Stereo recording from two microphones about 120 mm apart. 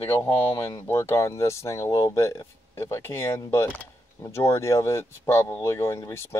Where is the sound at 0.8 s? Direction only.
20° left (ahead or behind).